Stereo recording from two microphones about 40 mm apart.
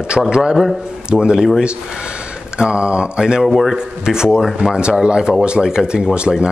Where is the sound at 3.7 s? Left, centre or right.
Centre.